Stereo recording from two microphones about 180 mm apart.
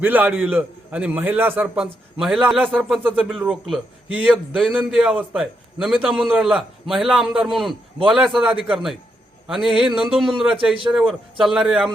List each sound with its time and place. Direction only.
0.0 s a man's voice: 10° right (ahead or behind)
10.3 s a man's voice: 30° right (ahead or behind)
10.8 s a man's voice: centre (ahead or behind)